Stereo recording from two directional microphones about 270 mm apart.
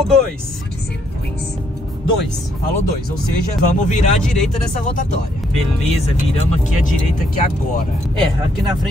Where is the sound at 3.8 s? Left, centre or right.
Left.